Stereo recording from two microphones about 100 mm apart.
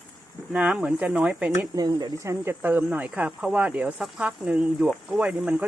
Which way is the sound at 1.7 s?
40° right (ahead or behind).